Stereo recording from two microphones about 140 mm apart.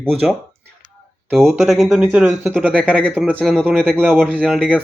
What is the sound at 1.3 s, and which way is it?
Speech, centre (ahead or behind).